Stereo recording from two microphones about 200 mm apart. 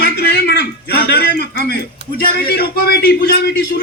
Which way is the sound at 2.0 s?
55° right (ahead or behind).